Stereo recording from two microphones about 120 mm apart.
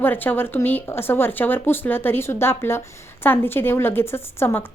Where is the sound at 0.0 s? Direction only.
15° left (ahead or behind).